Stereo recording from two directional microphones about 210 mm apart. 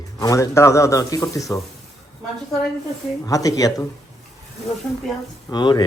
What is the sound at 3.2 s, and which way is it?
Speech, 15° left (ahead or behind).